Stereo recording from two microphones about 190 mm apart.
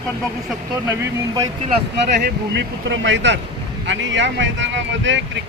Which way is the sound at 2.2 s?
70° right (ahead or behind).